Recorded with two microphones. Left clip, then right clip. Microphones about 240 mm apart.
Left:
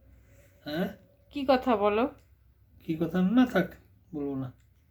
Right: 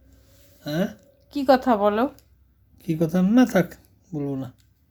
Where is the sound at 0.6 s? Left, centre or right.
Right.